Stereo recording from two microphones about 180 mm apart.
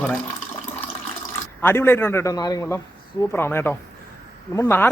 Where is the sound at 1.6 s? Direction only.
15° left (ahead or behind).